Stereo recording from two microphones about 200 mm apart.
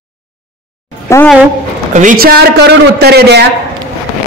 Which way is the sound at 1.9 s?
40° right (ahead or behind).